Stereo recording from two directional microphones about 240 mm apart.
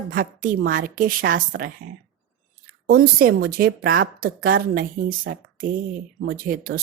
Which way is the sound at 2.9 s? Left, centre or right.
Right.